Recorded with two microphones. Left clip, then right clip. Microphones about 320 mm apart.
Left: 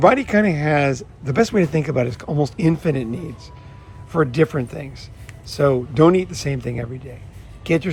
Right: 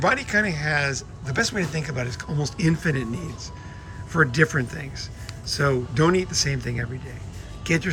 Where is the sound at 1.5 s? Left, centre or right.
Centre.